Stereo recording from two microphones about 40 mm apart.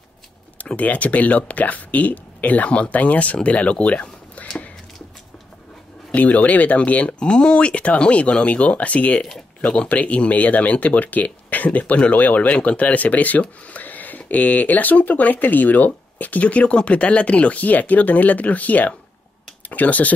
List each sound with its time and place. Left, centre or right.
0.7 s speech: left
6.1 s speech: left
7.2 s speech: left